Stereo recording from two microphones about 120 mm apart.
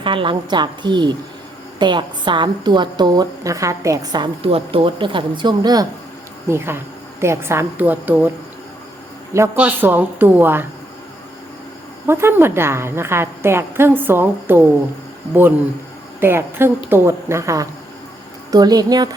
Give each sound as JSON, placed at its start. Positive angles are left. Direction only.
{"t": 0.0, "sound": "a woman's voice", "side_deg": -45}
{"t": 4.5, "sound": "speech", "side_deg": -50}
{"t": 6.5, "sound": "a woman's voice", "side_deg": -20}
{"t": 9.6, "sound": "a woman's voice", "side_deg": -15}
{"t": 12.0, "sound": "a woman's voice", "side_deg": -20}